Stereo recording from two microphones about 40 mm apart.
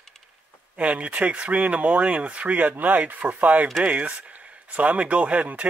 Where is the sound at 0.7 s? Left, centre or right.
Right.